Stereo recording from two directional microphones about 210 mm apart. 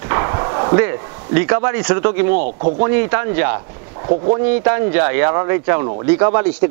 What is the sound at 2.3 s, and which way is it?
Speech, 40° right (ahead or behind).